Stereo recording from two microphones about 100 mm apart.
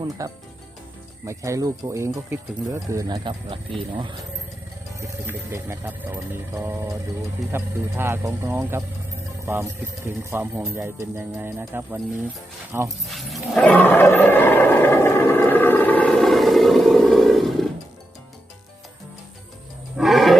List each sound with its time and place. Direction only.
0.2 s speech: 35° right (ahead or behind)
3.2 s speech: 60° right (ahead or behind)
4.9 s speech: 25° right (ahead or behind)
13.1 s roaring cats: centre (ahead or behind)
13.6 s roar: 15° left (ahead or behind)
20.0 s wild animals: centre (ahead or behind)